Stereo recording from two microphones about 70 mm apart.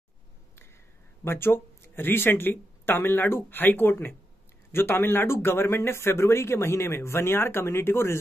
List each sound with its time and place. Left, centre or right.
1.2 s speech: left